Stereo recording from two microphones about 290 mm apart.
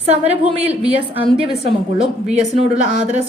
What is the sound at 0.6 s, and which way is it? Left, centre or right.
Speech, centre.